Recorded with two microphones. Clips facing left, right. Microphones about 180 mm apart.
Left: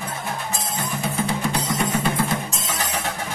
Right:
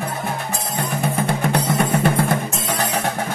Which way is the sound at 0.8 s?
60° right (ahead or behind).